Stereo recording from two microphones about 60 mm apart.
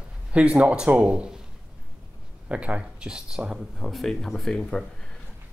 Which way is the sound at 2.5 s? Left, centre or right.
Right.